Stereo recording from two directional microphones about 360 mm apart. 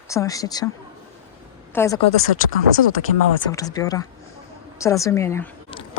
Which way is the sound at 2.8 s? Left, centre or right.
Left.